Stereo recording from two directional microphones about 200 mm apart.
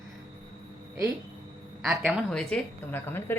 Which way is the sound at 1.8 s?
5° right (ahead or behind).